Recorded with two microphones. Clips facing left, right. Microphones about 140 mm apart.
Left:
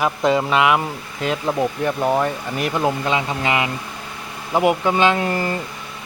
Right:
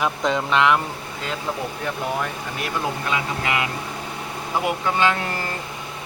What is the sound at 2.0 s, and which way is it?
Speech, 30° left (ahead or behind).